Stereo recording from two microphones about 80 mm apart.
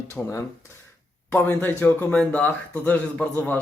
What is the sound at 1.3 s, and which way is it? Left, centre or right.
A man's voice, left.